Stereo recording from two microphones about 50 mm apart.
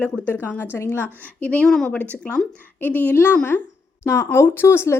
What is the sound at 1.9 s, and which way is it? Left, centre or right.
Speech, left.